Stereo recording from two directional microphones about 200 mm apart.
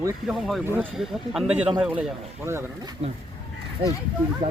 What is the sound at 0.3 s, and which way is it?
Speech, centre (ahead or behind).